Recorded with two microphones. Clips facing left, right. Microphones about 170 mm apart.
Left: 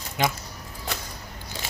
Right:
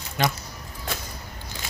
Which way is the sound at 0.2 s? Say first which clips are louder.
Even; 15° left (ahead or behind).